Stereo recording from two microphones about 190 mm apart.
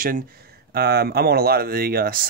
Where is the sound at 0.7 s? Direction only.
55° right (ahead or behind).